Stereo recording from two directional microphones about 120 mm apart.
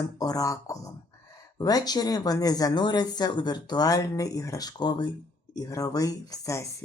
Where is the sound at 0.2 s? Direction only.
30° left (ahead or behind).